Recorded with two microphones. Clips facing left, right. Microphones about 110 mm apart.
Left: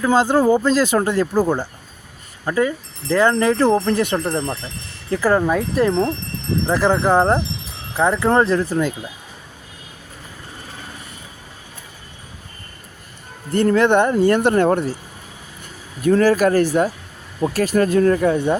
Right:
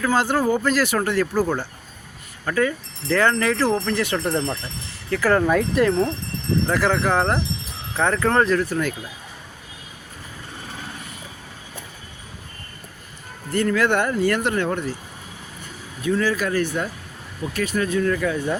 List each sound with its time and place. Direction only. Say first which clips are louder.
0.0 s speech: left 5 dB; 20° left (ahead or behind)
4.2 s speech: left 1 dB; 10° left (ahead or behind); by 9.0 s 25° left (ahead or behind)
13.5 s speech: left 5 dB; 30° left (ahead or behind)
14.5 s speech: left 7 dB; 40° left (ahead or behind)
16.0 s speech: left 7 dB; 45° left (ahead or behind)
17.4 s speech: left 7 dB; 50° left (ahead or behind); by 18.5 s 30° left (ahead or behind)